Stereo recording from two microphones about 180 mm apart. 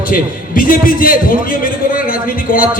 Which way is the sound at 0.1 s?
50° left (ahead or behind).